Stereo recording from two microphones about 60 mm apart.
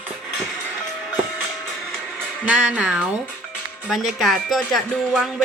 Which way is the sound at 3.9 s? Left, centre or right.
Centre.